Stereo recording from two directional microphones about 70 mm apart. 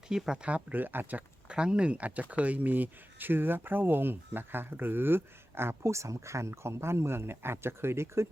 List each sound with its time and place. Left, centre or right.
0.1 s speech: centre
0.4 s speech: right
1.5 s speech: centre; by 8.3 s right